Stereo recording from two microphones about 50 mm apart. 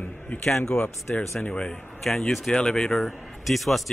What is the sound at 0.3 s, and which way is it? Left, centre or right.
A man's voice, left.